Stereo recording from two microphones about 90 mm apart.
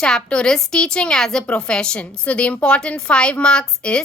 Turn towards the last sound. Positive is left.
turn(degrees=5)  # may be behind; listen again after turning